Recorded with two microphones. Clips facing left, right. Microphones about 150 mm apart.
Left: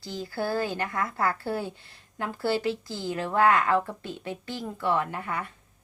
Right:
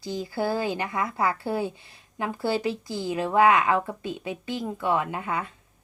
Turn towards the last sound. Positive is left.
turn(degrees=-20)  # may be behind; listen again after turning